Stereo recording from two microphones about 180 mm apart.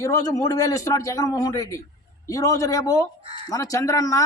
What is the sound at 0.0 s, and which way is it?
A man's voice, 20° left (ahead or behind).